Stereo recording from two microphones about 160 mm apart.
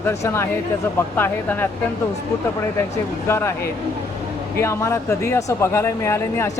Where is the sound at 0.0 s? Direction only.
15° left (ahead or behind).